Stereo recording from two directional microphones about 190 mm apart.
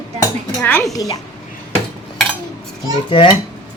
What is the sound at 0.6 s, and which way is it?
Speech, 10° left (ahead or behind).